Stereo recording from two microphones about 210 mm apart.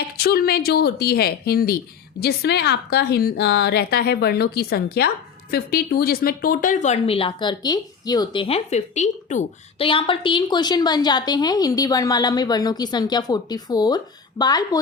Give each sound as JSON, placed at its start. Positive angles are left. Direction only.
{"t": 0.2, "sound": "a woman's voice", "side_deg": 50}